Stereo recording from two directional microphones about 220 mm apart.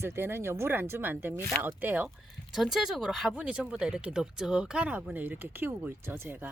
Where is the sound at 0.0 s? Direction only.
10° right (ahead or behind).